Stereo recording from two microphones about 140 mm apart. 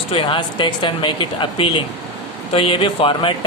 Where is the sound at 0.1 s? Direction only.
35° left (ahead or behind).